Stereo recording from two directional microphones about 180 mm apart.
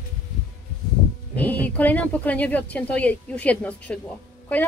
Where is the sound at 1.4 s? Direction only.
10° left (ahead or behind).